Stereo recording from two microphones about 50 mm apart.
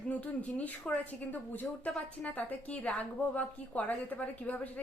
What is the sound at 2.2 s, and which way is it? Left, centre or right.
A woman's voice, left.